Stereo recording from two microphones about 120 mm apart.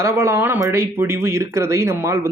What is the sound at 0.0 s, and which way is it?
Speech, 25° right (ahead or behind).